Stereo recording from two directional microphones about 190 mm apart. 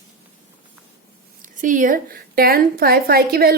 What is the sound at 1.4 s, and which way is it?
A woman's voice, 45° right (ahead or behind).